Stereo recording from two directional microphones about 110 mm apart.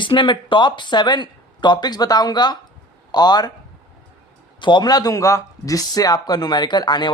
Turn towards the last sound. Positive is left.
turn(degrees=40)  # may be behind; listen again after turning